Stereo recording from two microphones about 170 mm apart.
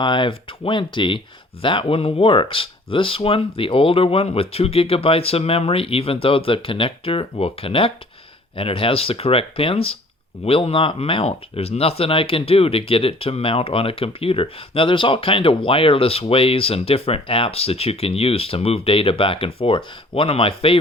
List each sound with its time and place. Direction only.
0.0 s speech: 30° left (ahead or behind)